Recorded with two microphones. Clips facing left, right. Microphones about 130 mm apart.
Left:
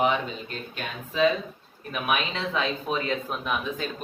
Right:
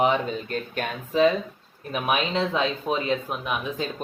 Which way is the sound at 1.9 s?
30° right (ahead or behind).